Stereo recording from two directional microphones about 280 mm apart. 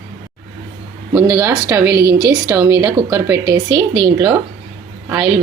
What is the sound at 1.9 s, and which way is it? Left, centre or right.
Speech, right.